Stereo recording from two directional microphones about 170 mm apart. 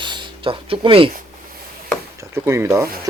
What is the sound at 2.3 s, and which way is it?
Speech, 15° right (ahead or behind).